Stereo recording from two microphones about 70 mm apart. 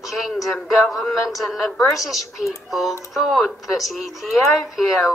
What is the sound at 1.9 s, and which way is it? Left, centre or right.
Speech, centre.